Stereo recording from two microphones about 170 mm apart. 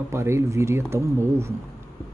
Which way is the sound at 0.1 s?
15° right (ahead or behind).